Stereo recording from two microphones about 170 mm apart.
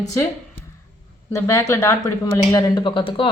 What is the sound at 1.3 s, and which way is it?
Speech, 15° left (ahead or behind).